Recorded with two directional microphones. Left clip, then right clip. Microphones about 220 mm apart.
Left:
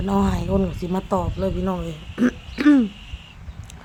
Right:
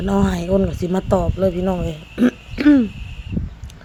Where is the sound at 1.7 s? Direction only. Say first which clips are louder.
Right 4 dB; 5° right (ahead or behind).